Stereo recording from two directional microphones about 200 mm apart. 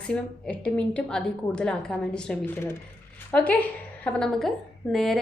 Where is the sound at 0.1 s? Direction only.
5° left (ahead or behind).